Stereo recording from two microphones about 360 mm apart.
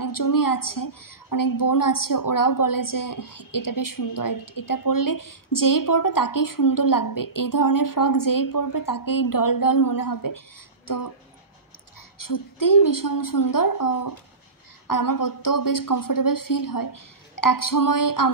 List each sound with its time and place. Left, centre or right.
0.0 s a woman's voice: left
12.2 s a woman's voice: left